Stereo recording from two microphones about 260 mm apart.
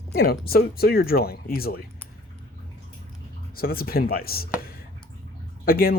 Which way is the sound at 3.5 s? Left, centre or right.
Left.